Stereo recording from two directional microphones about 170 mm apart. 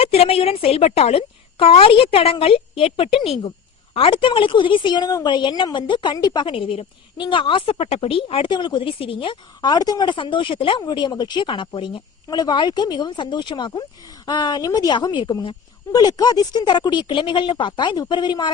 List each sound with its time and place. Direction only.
0.0 s a woman's voice: 35° left (ahead or behind)